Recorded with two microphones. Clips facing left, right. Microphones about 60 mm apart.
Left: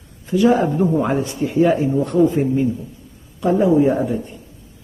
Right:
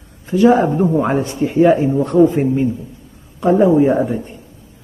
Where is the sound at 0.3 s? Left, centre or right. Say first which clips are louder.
Right 3 dB; right.